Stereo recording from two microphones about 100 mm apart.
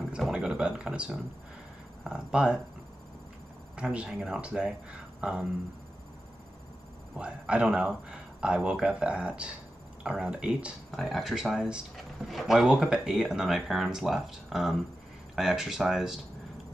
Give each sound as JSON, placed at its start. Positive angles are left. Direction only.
{"t": 0.1, "sound": "speech", "side_deg": -10}
{"t": 3.7, "sound": "speech", "side_deg": -10}
{"t": 7.2, "sound": "speech", "side_deg": -10}